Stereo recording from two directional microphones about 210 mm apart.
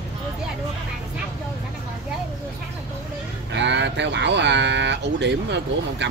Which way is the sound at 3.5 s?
55° right (ahead or behind).